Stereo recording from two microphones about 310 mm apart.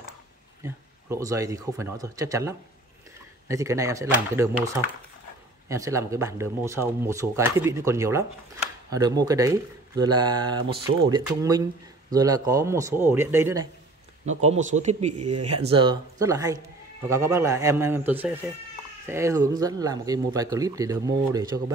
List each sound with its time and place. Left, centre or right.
0.7 s speech: centre
14.4 s speech: right
15.2 s speech: right
15.6 s speech: centre